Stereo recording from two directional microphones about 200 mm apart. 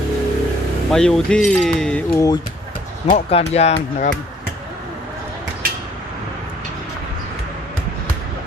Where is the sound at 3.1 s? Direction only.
30° left (ahead or behind).